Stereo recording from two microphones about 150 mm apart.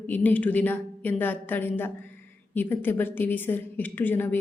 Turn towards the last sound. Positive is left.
turn(degrees=15)  # may be behind; listen again after turning